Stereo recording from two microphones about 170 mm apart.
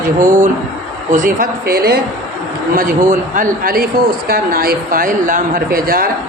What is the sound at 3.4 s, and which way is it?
Speech, 55° right (ahead or behind).